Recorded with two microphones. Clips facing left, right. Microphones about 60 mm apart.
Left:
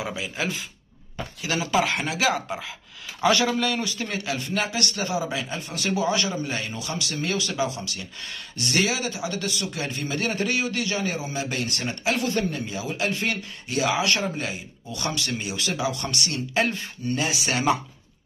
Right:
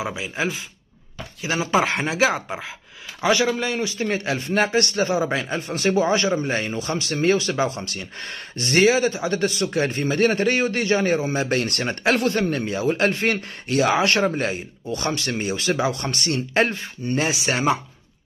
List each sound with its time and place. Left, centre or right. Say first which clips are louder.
0.0 s a man's voice: right 3 dB; right
3.2 s a man's voice: right 1 dB; centre